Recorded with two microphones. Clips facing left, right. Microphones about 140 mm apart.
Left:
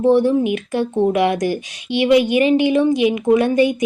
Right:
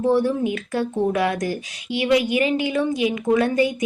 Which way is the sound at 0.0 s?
20° left (ahead or behind).